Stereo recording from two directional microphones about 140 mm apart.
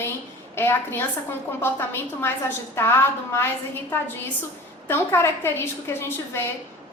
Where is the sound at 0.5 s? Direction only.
15° left (ahead or behind).